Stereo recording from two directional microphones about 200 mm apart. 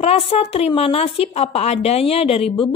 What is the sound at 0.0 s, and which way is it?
A woman's voice, 30° left (ahead or behind).